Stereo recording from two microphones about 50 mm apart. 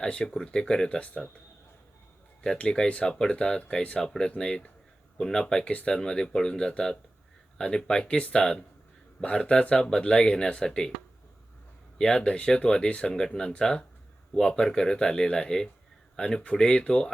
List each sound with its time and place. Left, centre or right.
0.0 s speech: centre
2.6 s speech: centre
11.9 s speech: centre